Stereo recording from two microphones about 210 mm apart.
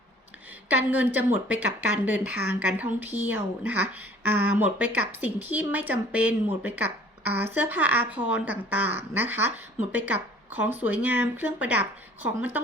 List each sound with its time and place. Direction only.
0.8 s a woman's voice: 10° right (ahead or behind)